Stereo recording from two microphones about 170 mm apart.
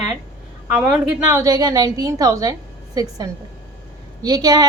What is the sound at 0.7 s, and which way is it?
A woman's voice, 10° right (ahead or behind).